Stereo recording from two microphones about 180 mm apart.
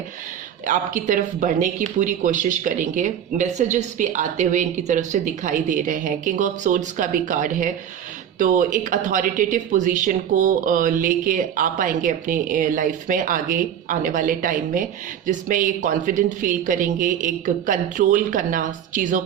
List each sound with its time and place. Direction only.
0.6 s speech: 45° right (ahead or behind)